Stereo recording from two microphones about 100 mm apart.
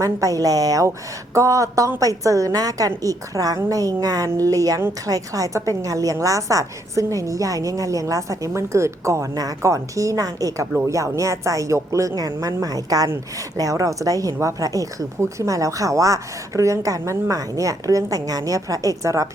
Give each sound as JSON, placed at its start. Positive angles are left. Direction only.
{"t": 0.0, "sound": "speech", "side_deg": -35}